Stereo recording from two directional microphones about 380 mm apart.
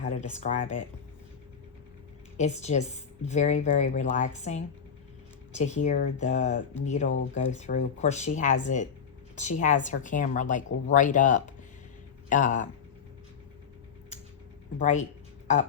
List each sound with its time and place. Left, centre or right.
0.0 s speech: centre
2.4 s a woman's voice: centre
14.8 s speech: centre